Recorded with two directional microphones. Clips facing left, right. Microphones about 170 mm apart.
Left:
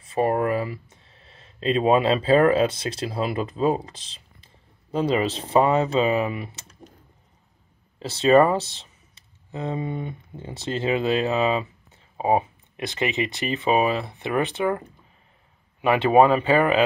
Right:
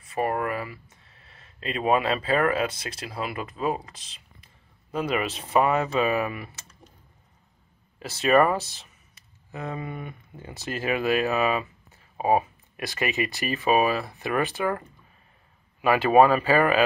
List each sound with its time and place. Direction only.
0.0 s speech: 25° left (ahead or behind)
8.0 s speech: 25° left (ahead or behind)
15.8 s speech: 25° left (ahead or behind)